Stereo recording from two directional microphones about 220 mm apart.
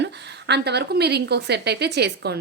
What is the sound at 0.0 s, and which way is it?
A woman's voice, 50° right (ahead or behind).